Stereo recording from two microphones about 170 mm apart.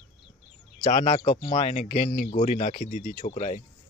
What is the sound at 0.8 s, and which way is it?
Speech, 35° left (ahead or behind).